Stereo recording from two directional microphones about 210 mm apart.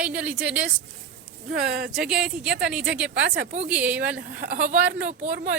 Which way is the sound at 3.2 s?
55° right (ahead or behind).